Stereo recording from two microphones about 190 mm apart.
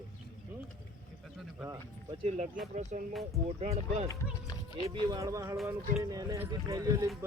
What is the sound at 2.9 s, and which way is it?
Speech, 40° right (ahead or behind).